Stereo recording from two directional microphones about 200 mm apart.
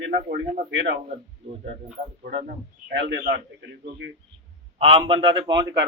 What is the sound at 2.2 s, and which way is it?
Speech, 45° right (ahead or behind).